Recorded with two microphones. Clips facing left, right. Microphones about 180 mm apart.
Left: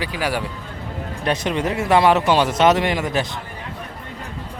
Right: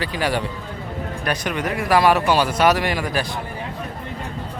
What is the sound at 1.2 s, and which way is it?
Speech, 25° left (ahead or behind).